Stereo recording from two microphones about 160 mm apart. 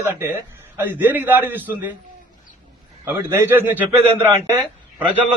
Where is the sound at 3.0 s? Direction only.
15° right (ahead or behind).